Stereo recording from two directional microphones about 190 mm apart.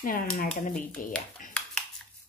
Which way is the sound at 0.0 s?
45° left (ahead or behind).